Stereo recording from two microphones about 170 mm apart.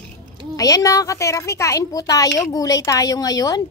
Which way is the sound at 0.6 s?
20° left (ahead or behind).